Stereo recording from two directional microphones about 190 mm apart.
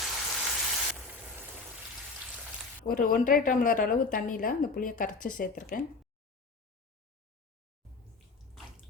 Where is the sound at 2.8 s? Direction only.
50° left (ahead or behind).